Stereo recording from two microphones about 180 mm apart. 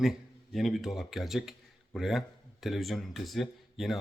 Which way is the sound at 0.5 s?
Centre (ahead or behind).